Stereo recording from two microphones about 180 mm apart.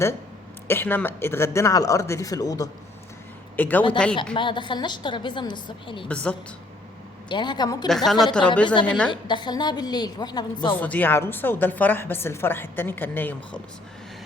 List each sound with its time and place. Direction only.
0.7 s a woman's voice: 10° left (ahead or behind)
3.6 s a woman's voice: 10° left (ahead or behind)
4.4 s a woman's voice: 25° left (ahead or behind)
6.1 s a woman's voice: 5° left (ahead or behind)
7.3 s a woman's voice: 25° left (ahead or behind)
7.9 s a woman's voice: centre (ahead or behind)
8.6 s a woman's voice: 25° left (ahead or behind)
10.8 s a woman's voice: 10° left (ahead or behind)